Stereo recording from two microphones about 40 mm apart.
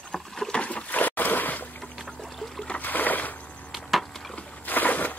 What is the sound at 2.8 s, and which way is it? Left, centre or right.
Rowboat, left.